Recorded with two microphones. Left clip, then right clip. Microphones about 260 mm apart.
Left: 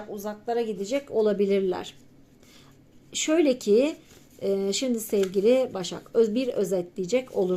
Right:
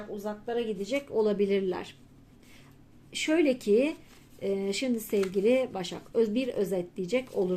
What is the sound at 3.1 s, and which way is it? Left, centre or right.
Speech, centre.